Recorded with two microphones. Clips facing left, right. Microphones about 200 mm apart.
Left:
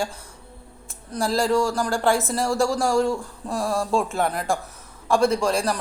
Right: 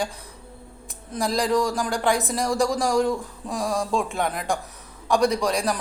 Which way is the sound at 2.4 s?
Centre (ahead or behind).